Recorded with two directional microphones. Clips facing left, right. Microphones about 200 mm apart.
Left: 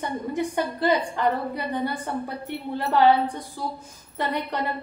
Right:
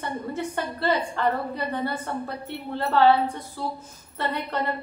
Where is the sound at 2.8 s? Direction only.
15° left (ahead or behind).